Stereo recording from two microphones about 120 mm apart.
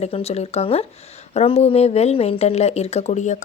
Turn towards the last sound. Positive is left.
turn(degrees=75)  # may be behind; listen again after turning